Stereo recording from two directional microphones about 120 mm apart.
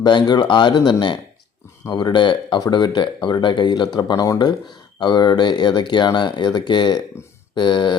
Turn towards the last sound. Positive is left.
turn(degrees=40)  # may be behind; listen again after turning